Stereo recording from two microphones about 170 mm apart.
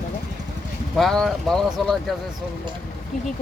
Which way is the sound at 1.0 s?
Centre (ahead or behind).